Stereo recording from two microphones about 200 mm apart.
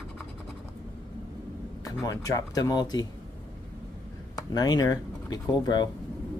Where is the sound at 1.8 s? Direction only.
15° left (ahead or behind).